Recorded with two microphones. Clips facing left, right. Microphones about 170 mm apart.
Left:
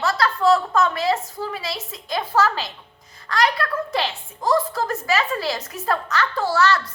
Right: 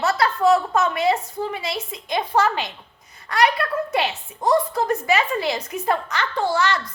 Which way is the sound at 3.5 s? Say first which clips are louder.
Right 1 dB; 20° right (ahead or behind).